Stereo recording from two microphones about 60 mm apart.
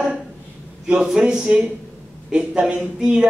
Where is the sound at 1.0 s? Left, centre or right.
Centre.